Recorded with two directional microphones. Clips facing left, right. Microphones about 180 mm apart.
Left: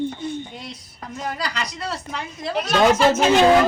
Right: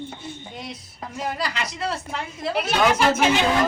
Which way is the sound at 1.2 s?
5° right (ahead or behind).